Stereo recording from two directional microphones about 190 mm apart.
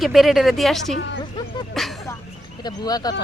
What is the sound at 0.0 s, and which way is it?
Speech, centre (ahead or behind).